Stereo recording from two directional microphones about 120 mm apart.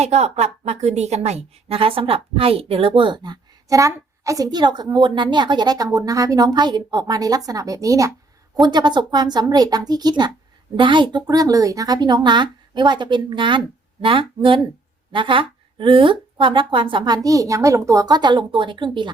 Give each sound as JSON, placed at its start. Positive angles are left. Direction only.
{"t": 0.0, "sound": "a woman's voice", "side_deg": -65}
{"t": 3.7, "sound": "a woman's voice", "side_deg": -25}
{"t": 8.6, "sound": "a woman's voice", "side_deg": -40}